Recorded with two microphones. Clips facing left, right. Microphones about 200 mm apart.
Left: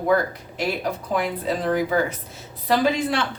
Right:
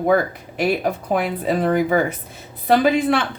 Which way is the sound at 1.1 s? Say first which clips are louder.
Right 3 dB; 55° right (ahead or behind).